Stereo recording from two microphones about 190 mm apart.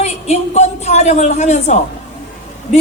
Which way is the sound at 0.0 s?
35° left (ahead or behind).